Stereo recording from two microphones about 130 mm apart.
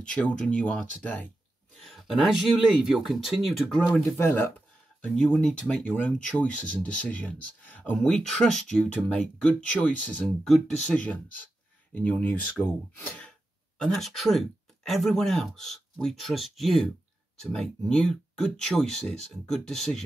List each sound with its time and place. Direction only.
0.0 s speech: 10° left (ahead or behind)
1.8 s speech: centre (ahead or behind)
3.9 s speech: 20° left (ahead or behind)